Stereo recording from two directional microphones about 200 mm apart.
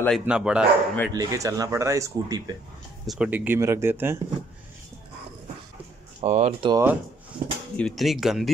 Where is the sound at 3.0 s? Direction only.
5° right (ahead or behind).